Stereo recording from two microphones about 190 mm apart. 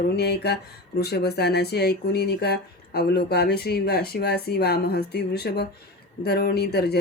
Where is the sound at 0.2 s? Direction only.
60° left (ahead or behind).